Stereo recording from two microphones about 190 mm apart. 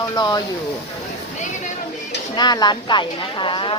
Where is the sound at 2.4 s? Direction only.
20° left (ahead or behind).